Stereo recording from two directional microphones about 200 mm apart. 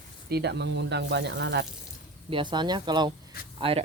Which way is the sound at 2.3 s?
25° right (ahead or behind).